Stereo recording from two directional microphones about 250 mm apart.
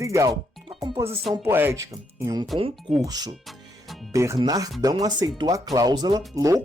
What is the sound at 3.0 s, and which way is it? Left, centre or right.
Speech, centre.